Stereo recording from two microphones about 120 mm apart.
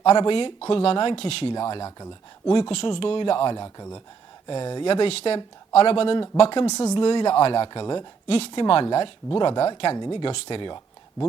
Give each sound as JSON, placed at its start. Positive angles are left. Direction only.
{"t": 0.0, "sound": "speech", "side_deg": 45}
{"t": 1.7, "sound": "a woman's voice", "side_deg": 35}
{"t": 2.5, "sound": "speech", "side_deg": 45}
{"t": 6.7, "sound": "a woman's voice", "side_deg": 30}
{"t": 8.4, "sound": "speech", "side_deg": 50}